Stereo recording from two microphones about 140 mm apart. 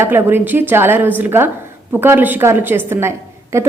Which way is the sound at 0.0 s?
15° right (ahead or behind).